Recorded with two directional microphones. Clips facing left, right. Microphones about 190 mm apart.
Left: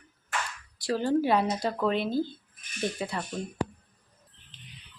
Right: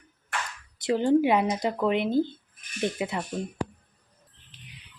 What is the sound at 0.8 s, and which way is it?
Speech, 20° right (ahead or behind).